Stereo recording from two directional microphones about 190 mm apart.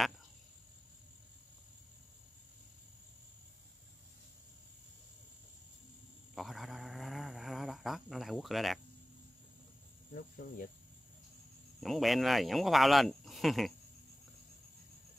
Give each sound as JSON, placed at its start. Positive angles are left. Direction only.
{"t": 6.3, "sound": "a sound", "side_deg": 0}
{"t": 10.1, "sound": "speech", "side_deg": 50}
{"t": 11.8, "sound": "speech", "side_deg": 0}